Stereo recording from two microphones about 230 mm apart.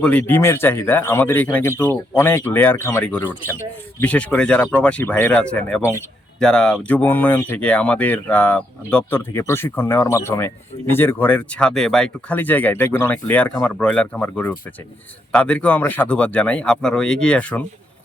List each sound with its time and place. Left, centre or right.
0.0 s speech: centre